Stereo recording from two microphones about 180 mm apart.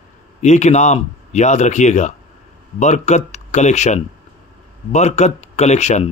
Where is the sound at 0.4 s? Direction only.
40° left (ahead or behind).